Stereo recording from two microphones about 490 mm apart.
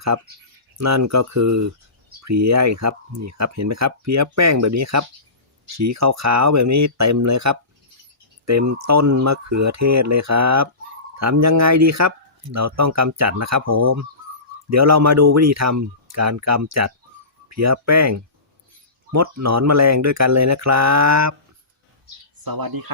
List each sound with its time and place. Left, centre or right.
0.8 s speech: right
22.4 s speech: right